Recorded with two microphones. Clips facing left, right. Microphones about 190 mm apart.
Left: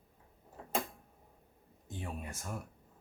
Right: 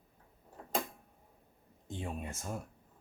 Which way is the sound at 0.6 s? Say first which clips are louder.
Left 1 dB; centre (ahead or behind).